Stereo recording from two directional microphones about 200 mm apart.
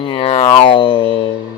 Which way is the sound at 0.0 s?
25° left (ahead or behind).